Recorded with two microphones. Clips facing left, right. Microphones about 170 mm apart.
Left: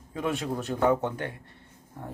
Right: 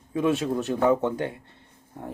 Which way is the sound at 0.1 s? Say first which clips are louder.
Right 6 dB; 20° right (ahead or behind).